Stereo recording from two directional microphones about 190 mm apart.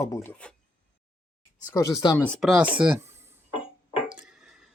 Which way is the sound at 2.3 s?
Centre (ahead or behind).